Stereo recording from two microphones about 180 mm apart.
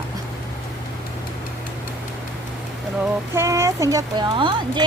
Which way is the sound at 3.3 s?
15° right (ahead or behind).